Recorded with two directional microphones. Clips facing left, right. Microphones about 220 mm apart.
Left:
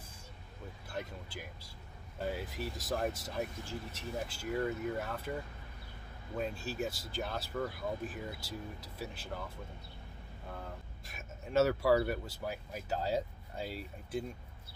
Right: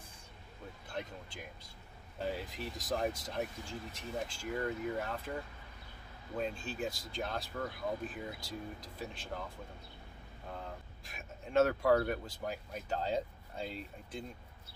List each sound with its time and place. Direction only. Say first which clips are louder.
0.9 s speech: left 1 dB; 5° left (ahead or behind)
6.3 s speech: left 1 dB; 5° left (ahead or behind)
11.1 s speech: left 1 dB; 5° left (ahead or behind)